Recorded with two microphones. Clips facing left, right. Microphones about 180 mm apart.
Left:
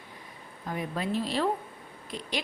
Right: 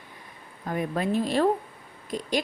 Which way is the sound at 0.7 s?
50° right (ahead or behind).